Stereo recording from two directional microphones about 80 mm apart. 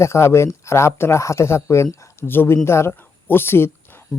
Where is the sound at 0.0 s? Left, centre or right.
Left.